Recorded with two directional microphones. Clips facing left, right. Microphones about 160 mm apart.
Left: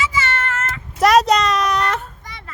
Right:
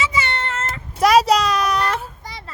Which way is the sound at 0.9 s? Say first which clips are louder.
Left 1 dB; centre (ahead or behind).